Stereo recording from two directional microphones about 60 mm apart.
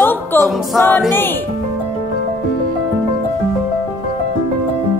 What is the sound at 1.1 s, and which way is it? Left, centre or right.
Speech, left.